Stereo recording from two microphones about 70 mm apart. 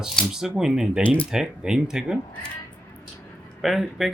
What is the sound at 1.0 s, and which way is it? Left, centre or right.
Speech, centre.